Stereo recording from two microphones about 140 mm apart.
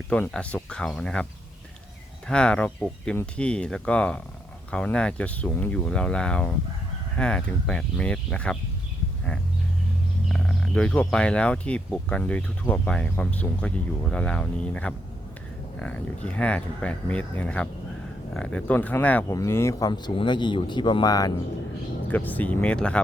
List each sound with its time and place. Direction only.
0.1 s speech: 10° left (ahead or behind)
10.2 s speech: centre (ahead or behind); by 19.9 s 20° left (ahead or behind)
19.9 s speech: 35° left (ahead or behind)
22.1 s speech: 10° left (ahead or behind)